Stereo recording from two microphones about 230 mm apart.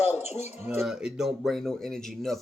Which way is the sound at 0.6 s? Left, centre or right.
Centre.